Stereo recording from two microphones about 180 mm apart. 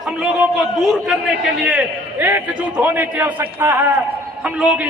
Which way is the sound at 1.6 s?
10° right (ahead or behind).